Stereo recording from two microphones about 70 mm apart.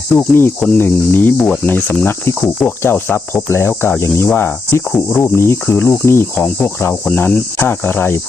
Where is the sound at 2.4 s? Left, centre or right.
Centre.